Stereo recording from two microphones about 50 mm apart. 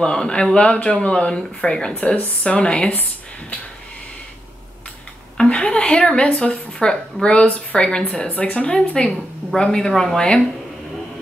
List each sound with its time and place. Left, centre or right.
0.0 s a woman's voice: centre
2.0 s speech: left
2.4 s speech: centre
2.9 s speech: left
5.4 s a sound: centre
6.0 s a woman's voice: centre
8.7 s a woman's voice: centre